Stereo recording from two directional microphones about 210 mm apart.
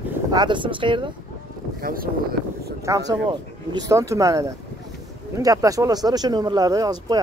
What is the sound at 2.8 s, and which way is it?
Speech, 15° right (ahead or behind).